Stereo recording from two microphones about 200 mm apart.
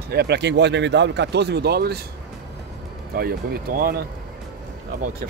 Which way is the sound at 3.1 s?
50° right (ahead or behind).